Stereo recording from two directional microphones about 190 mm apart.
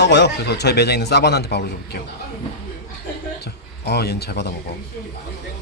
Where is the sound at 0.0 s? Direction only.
65° left (ahead or behind).